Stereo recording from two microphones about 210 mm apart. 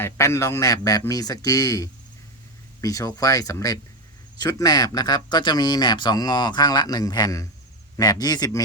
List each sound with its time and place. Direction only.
0.0 s speech: 15° left (ahead or behind)